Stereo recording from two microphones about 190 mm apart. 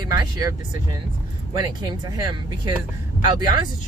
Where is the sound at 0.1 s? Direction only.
20° right (ahead or behind).